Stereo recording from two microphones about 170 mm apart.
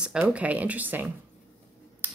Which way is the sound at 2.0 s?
10° right (ahead or behind).